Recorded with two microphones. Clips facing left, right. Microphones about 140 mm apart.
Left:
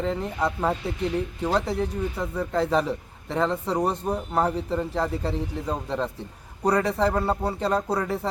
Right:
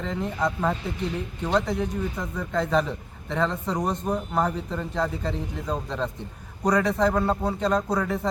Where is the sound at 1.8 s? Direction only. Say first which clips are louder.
Left 1 dB; 30° left (ahead or behind).